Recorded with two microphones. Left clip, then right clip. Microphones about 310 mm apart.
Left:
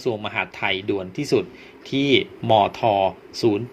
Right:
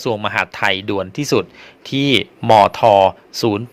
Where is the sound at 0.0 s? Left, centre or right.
Right.